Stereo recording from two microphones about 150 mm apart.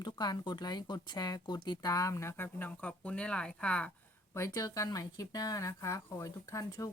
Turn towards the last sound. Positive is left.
turn(degrees=20)  # may be behind; listen again after turning